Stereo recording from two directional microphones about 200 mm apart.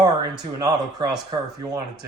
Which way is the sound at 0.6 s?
20° right (ahead or behind).